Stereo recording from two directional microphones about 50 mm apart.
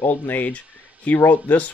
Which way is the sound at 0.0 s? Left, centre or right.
Left.